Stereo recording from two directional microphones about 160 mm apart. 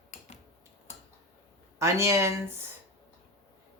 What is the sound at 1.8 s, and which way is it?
Speech, 15° right (ahead or behind).